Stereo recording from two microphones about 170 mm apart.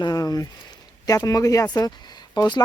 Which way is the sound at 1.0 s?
20° left (ahead or behind).